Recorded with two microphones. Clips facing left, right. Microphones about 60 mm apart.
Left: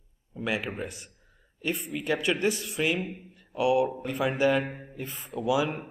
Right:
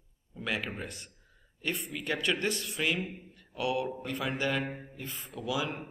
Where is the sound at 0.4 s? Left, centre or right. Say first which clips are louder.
Left 4 dB; centre.